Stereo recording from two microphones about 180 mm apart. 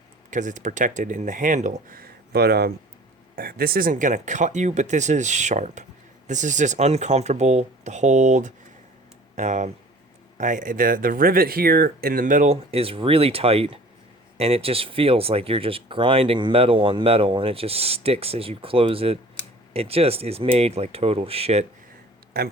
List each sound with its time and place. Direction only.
0.3 s speech: 45° right (ahead or behind)
22.3 s speech: 65° right (ahead or behind)